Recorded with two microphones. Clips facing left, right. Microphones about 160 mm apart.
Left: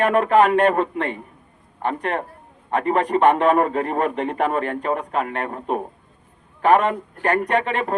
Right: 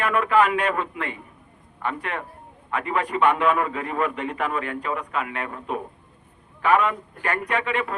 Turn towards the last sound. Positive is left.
turn(degrees=40)  # may be behind; listen again after turning